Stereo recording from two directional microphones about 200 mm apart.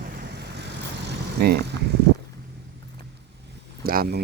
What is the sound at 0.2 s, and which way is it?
Vehicle, 55° right (ahead or behind).